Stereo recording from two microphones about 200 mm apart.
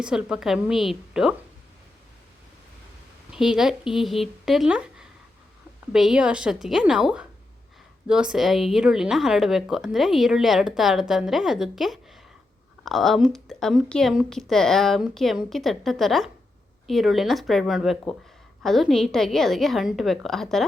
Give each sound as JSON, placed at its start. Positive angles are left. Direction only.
{"t": 0.0, "sound": "a woman's voice", "side_deg": -5}
{"t": 3.3, "sound": "a woman's voice", "side_deg": 0}